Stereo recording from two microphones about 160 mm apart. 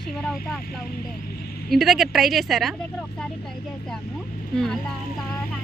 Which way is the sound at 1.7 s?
Centre (ahead or behind).